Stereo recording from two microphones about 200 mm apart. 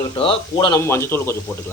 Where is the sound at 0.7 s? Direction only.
10° left (ahead or behind).